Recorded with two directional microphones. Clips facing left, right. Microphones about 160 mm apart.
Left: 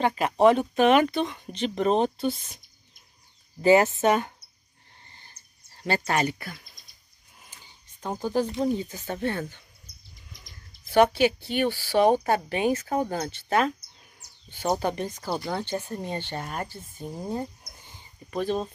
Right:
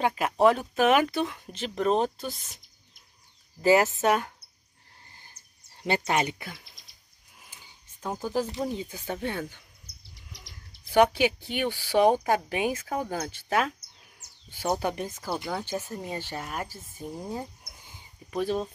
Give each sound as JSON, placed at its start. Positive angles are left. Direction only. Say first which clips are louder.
{"t": 0.0, "sound": "speech", "louder": "left 2 dB", "side_deg": -5}
{"t": 3.6, "sound": "speech", "louder": "left 2 dB", "side_deg": 0}
{"t": 5.0, "sound": "a sound", "louder": "even", "side_deg": -5}
{"t": 5.8, "sound": "speech", "louder": "left 1 dB", "side_deg": -15}
{"t": 7.4, "sound": "a sound", "louder": "even", "side_deg": -10}
{"t": 8.7, "sound": "speech", "louder": "left 2 dB", "side_deg": -10}
{"t": 9.8, "sound": "bird", "louder": "right 1 dB", "side_deg": -75}
{"t": 10.9, "sound": "speech", "louder": "left 2 dB", "side_deg": -15}
{"t": 14.8, "sound": "speech", "louder": "left 2 dB", "side_deg": -10}
{"t": 17.3, "sound": "a sound", "louder": "left 4 dB", "side_deg": -5}